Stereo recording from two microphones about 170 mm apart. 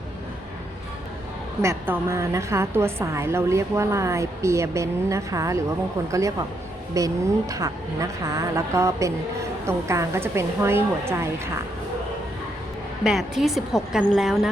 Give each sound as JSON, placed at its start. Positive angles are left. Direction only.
{"t": 1.6, "sound": "a woman's voice", "side_deg": -15}
{"t": 13.1, "sound": "a woman's voice", "side_deg": 0}